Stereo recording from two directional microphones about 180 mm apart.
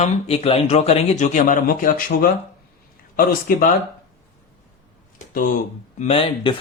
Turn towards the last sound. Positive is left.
turn(degrees=30)  # may be behind; listen again after turning